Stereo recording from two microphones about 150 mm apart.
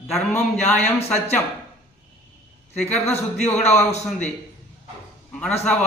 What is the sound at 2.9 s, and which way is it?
Speech, 45° left (ahead or behind).